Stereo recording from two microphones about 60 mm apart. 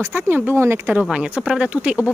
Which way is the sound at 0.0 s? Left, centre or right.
Right.